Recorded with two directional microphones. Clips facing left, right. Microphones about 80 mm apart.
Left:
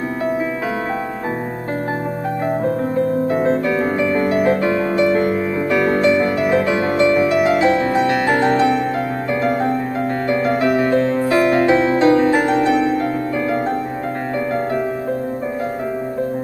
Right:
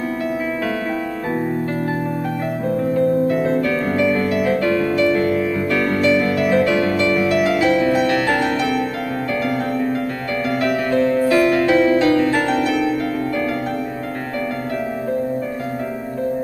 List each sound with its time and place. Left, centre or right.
2.8 s music: left
3.6 s music: centre
4.3 s music: left
5.7 s music: centre